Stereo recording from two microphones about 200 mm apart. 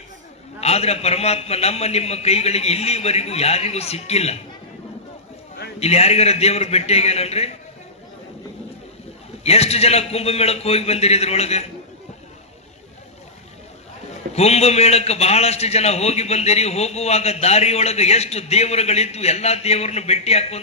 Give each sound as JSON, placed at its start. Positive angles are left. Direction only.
{"t": 0.6, "sound": "a man's voice", "side_deg": 30}
{"t": 5.8, "sound": "a man's voice", "side_deg": 30}
{"t": 9.4, "sound": "a man's voice", "side_deg": 30}
{"t": 14.3, "sound": "a man's voice", "side_deg": 30}